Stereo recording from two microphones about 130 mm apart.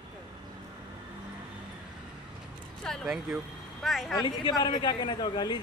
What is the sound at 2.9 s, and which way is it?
Speech, 5° left (ahead or behind).